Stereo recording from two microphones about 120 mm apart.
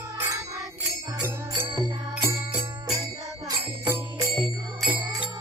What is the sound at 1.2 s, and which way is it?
Music, 20° right (ahead or behind).